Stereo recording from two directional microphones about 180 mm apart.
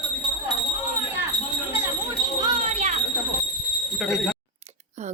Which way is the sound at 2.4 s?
30° right (ahead or behind).